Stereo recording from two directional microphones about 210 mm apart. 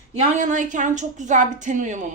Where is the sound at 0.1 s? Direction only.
35° right (ahead or behind).